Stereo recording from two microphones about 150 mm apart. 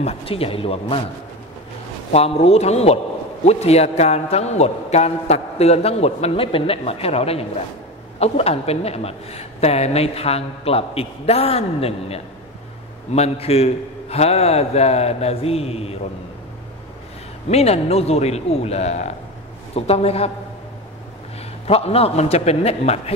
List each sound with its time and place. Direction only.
0.0 s a man's voice: 40° left (ahead or behind)
2.1 s a man's voice: 40° left (ahead or behind)
17.5 s a man's voice: 45° left (ahead or behind)
21.6 s a man's voice: 40° left (ahead or behind)